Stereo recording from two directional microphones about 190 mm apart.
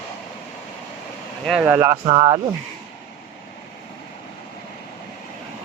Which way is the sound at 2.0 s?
25° right (ahead or behind).